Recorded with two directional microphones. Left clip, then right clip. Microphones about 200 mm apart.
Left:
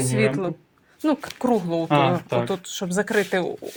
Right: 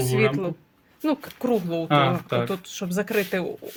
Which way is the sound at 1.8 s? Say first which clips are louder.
Even; 25° right (ahead or behind).